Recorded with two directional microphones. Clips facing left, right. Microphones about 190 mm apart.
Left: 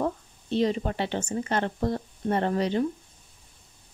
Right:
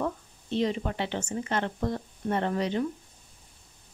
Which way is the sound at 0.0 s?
35° left (ahead or behind).